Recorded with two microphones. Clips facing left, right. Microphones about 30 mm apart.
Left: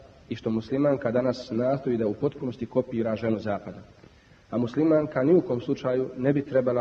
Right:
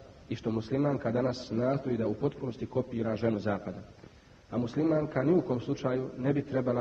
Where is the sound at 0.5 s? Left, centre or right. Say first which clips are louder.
Left 6 dB; centre.